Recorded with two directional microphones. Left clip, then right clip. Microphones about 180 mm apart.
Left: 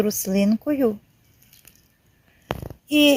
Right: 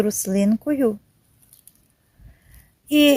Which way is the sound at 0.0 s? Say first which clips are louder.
Right 1 dB; 10° right (ahead or behind).